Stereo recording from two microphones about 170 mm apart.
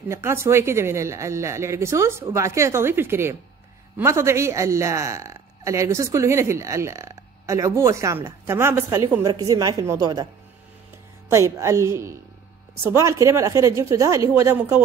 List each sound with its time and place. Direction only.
0.1 s a man's voice: 15° right (ahead or behind)
11.2 s a man's voice: 15° right (ahead or behind)